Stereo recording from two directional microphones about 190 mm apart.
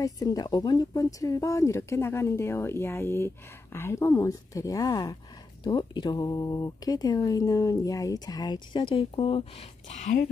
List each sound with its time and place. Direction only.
0.0 s speech: 20° left (ahead or behind); by 10.3 s 45° left (ahead or behind)